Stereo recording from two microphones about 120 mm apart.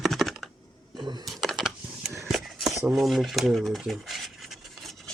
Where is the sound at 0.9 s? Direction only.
40° right (ahead or behind).